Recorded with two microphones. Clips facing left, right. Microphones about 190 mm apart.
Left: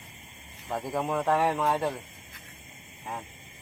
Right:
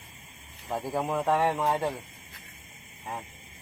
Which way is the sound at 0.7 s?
Centre (ahead or behind).